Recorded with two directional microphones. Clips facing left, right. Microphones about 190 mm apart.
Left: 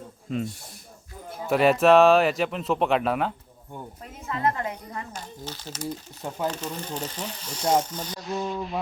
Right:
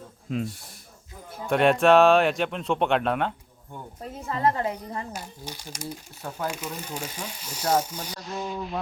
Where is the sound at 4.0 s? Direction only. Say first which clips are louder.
Right 2 dB; 30° right (ahead or behind).